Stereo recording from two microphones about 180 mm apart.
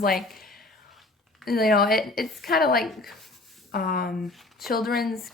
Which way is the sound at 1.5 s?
55° left (ahead or behind).